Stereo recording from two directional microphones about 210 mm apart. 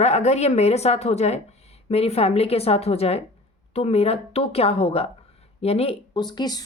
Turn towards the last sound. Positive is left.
turn(degrees=20)  # may be behind; listen again after turning